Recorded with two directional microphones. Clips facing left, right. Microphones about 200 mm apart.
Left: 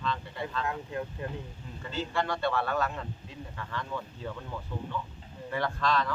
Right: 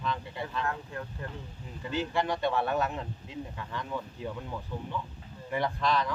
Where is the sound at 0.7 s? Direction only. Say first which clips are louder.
Left 2 dB; 20° left (ahead or behind).